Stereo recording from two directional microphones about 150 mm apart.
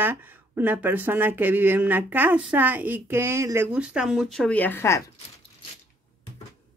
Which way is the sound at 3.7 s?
5° right (ahead or behind).